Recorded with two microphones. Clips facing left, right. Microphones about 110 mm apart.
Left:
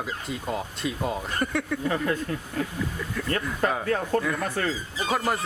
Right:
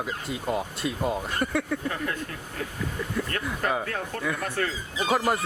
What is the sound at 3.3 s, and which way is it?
Speech, 20° left (ahead or behind).